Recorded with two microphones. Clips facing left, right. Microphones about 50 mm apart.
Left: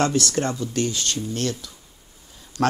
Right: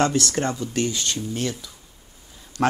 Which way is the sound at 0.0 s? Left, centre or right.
Right.